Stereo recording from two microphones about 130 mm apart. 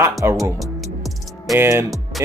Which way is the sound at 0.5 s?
Centre (ahead or behind).